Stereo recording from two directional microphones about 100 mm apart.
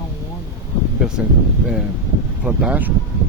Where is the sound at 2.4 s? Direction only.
10° right (ahead or behind).